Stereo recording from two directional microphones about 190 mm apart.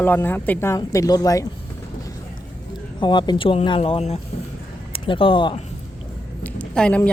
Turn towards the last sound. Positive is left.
turn(degrees=5)  # may be behind; listen again after turning